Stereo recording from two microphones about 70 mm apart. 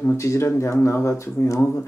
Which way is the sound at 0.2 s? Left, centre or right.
Left.